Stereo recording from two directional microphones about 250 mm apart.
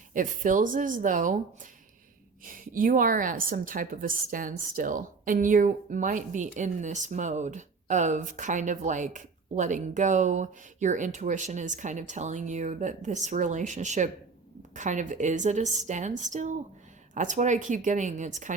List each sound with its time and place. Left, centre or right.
0.1 s speech: right
2.4 s a woman's voice: right